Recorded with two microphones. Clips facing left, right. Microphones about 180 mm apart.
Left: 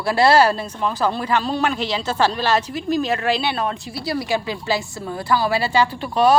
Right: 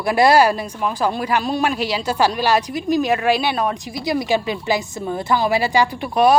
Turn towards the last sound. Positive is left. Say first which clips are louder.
# right 1 dB
turn(degrees=-15)  # may be behind; listen again after turning